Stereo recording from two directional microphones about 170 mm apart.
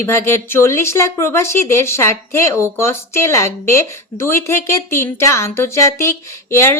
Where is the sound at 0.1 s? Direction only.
15° left (ahead or behind).